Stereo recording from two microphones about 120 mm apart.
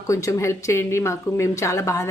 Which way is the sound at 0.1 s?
25° left (ahead or behind).